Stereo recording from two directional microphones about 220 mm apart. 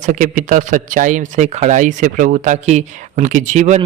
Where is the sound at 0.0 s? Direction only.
35° right (ahead or behind).